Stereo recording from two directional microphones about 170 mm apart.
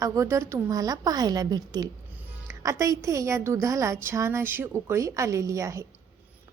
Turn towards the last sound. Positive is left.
turn(degrees=-20)  # may be behind; listen again after turning